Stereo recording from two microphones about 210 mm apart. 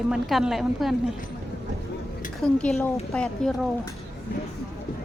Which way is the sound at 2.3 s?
Centre (ahead or behind).